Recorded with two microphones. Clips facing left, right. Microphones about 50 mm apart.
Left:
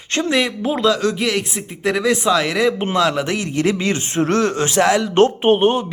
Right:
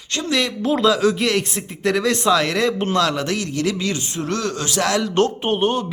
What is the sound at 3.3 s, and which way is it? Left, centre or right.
Speech, left.